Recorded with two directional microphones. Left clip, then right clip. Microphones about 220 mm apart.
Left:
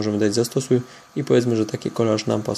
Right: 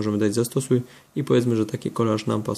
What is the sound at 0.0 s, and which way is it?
Speech, 20° right (ahead or behind).